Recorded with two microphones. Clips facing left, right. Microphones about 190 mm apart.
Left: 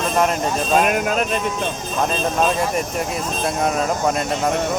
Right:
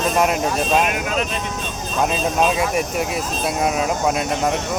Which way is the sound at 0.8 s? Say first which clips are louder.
Left 3 dB; 45° left (ahead or behind).